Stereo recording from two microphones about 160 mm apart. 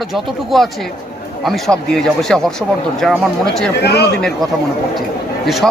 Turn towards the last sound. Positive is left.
turn(degrees=0)  # may be behind; listen again after turning